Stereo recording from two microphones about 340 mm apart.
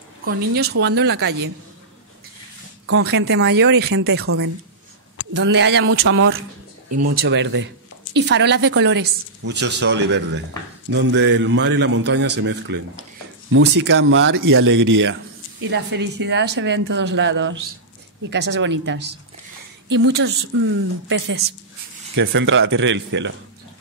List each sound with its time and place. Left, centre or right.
0.3 s speech: right
2.9 s a woman's voice: right
6.9 s speech: right
7.2 s a woman's voice: right
19.9 s a woman's voice: right
22.1 s a woman's voice: right